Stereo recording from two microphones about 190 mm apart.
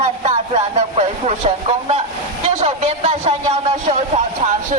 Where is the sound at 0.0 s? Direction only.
35° right (ahead or behind).